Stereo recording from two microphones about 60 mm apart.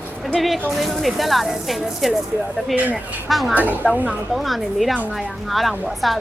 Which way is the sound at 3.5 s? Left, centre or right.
Right.